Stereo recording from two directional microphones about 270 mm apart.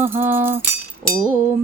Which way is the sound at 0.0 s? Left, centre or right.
Centre.